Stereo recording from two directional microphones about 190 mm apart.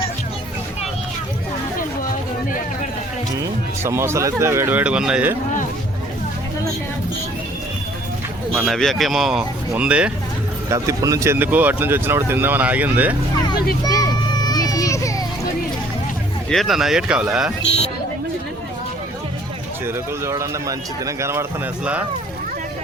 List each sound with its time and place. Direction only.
3.8 s speech: 15° right (ahead or behind)
8.5 s speech: centre (ahead or behind)
10.7 s speech: 15° right (ahead or behind)
13.8 s children playing: 20° left (ahead or behind)
16.5 s speech: centre (ahead or behind)
17.7 s music: 35° left (ahead or behind)
20.2 s speech: 15° right (ahead or behind)